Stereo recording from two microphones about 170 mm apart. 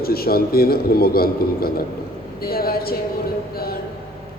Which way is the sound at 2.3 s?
65° left (ahead or behind).